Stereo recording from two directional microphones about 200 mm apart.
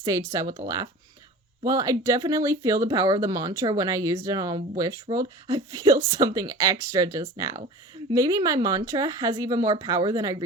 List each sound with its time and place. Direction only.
0.0 s speech: 15° right (ahead or behind)
1.6 s speech: 15° right (ahead or behind)